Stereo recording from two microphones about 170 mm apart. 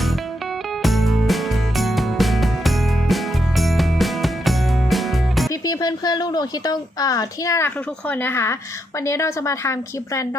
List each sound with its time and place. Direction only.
0.8 s music: centre (ahead or behind)
5.5 s a woman's voice: 20° left (ahead or behind)